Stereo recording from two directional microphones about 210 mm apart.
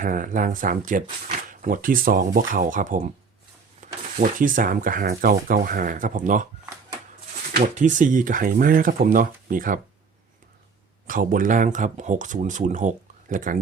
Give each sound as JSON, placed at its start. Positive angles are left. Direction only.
{"t": 0.0, "sound": "speech", "side_deg": -40}
{"t": 7.6, "sound": "speech", "side_deg": -35}
{"t": 11.0, "sound": "speech", "side_deg": -40}